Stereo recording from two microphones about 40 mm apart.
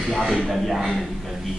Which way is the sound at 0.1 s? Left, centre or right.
Centre.